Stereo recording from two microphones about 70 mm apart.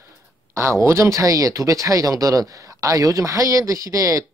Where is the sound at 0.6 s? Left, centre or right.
Right.